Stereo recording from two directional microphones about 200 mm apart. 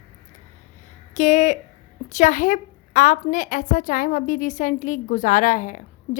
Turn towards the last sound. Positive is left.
turn(degrees=40)  # may be behind; listen again after turning